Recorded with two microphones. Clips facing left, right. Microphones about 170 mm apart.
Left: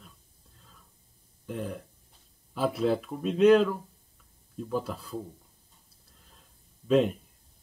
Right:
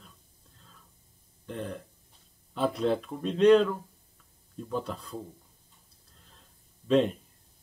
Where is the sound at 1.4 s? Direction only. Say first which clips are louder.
Left 1 dB; 5° left (ahead or behind).